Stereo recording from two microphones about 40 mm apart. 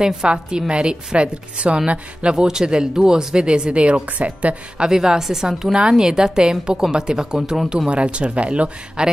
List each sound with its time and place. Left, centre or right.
0.0 s speech: centre
2.3 s speech: centre; by 4.6 s right
4.7 s a woman's voice: centre
7.9 s speech: right